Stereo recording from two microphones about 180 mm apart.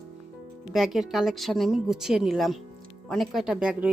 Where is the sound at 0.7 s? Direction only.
Centre (ahead or behind).